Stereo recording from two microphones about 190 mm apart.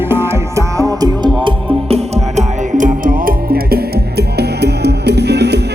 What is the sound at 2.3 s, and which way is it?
Music, 45° right (ahead or behind).